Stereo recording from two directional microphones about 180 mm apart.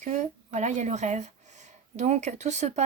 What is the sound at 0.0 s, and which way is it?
Speech, 40° right (ahead or behind).